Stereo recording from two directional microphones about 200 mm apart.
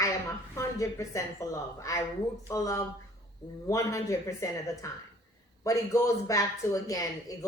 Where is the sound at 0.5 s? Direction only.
15° left (ahead or behind).